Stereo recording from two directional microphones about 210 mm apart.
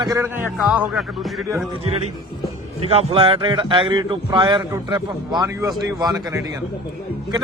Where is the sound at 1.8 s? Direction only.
25° right (ahead or behind).